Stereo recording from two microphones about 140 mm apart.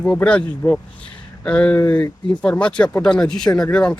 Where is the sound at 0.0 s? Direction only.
10° left (ahead or behind).